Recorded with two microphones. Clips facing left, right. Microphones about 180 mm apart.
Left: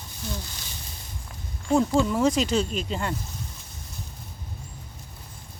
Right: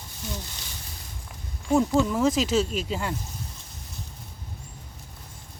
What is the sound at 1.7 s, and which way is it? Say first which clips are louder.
Speech: even; 5° right (ahead or behind).